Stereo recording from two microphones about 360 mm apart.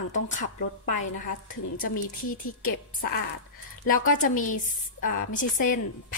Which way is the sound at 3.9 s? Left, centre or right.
Left.